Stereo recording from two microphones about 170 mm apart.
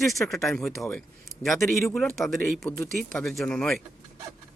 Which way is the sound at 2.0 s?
Centre (ahead or behind).